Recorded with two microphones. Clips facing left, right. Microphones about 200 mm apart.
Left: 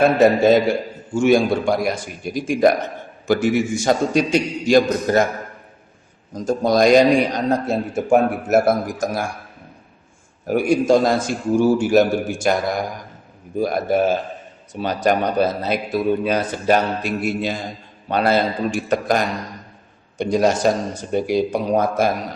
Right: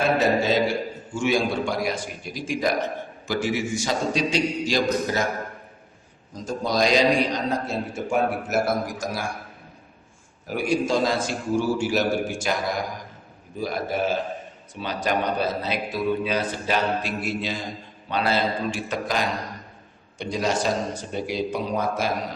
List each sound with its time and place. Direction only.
0.0 s a man's voice: 50° left (ahead or behind)
6.3 s a man's voice: 50° left (ahead or behind)
10.4 s a man's voice: 50° left (ahead or behind)
13.6 s a man's voice: 50° left (ahead or behind)